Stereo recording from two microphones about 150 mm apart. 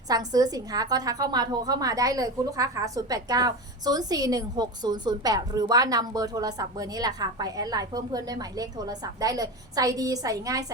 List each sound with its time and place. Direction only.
0.1 s a woman's voice: 25° right (ahead or behind)